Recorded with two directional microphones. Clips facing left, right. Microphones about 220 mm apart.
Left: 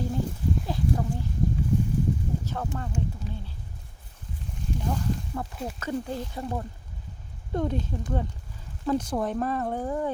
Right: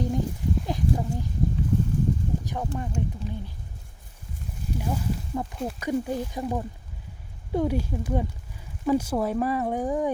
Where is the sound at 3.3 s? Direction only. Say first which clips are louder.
Right 4 dB; 15° right (ahead or behind).